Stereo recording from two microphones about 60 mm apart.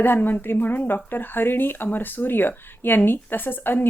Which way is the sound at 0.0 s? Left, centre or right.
Left.